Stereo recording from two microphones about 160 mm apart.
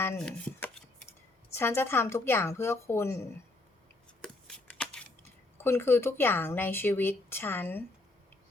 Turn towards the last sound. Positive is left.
turn(degrees=10)  # may be behind; listen again after turning